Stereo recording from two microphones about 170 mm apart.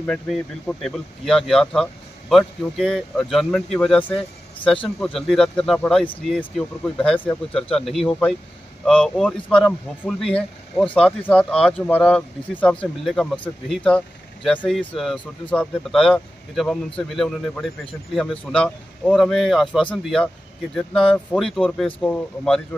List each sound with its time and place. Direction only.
0.0 s speech: 5° left (ahead or behind)